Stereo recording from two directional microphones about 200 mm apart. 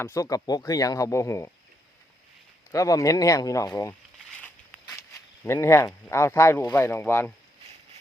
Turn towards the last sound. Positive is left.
turn(degrees=10)  # may be behind; listen again after turning